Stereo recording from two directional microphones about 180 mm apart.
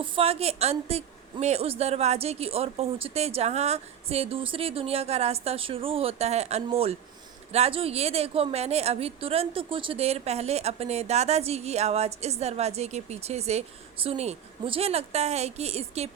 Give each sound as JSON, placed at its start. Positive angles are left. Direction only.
{"t": 0.0, "sound": "a woman's voice", "side_deg": -30}